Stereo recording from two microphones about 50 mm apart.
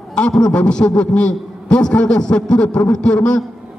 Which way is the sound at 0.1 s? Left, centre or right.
Centre.